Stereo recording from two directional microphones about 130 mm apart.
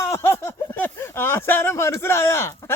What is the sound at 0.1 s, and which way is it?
Speech, 20° left (ahead or behind).